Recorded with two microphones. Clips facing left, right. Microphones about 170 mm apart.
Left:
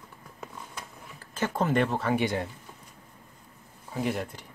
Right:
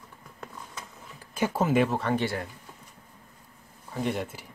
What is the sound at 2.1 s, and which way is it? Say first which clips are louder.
Speech: left 1 dB; 20° left (ahead or behind).